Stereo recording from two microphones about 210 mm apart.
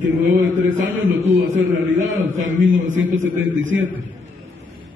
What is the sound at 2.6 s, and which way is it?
A man's voice, 65° right (ahead or behind).